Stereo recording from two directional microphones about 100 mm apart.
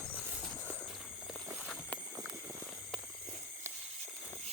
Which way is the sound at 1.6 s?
10° left (ahead or behind).